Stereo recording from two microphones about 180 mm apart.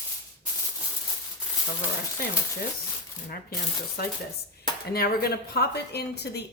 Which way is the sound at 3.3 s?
55° left (ahead or behind).